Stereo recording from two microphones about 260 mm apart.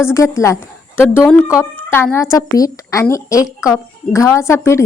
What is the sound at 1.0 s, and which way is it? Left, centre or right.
A woman's voice, centre.